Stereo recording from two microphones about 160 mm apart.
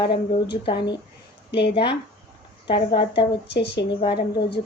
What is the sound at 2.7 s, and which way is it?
Speech, 30° left (ahead or behind).